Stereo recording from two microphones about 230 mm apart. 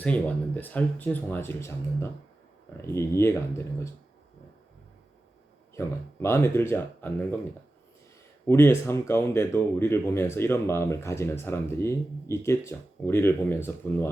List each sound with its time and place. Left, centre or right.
0.0 s speech: centre
6.2 s speech: centre
8.4 s speech: centre